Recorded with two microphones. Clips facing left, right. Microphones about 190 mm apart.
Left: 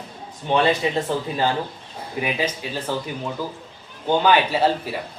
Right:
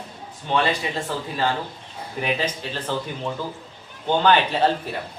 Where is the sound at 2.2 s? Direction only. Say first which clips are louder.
Even; 10° left (ahead or behind).